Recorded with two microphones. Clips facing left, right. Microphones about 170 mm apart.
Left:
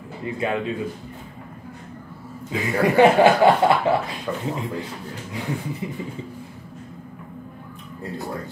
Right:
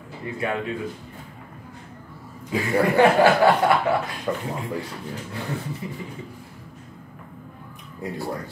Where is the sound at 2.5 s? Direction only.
20° left (ahead or behind).